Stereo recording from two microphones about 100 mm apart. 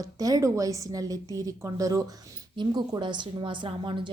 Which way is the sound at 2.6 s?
50° right (ahead or behind).